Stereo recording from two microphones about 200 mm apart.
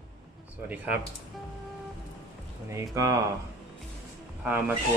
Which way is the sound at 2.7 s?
15° right (ahead or behind).